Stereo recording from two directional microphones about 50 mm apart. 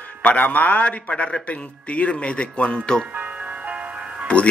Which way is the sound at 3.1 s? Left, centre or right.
Right.